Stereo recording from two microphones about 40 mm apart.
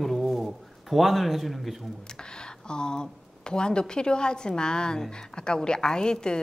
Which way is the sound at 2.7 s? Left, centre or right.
Left.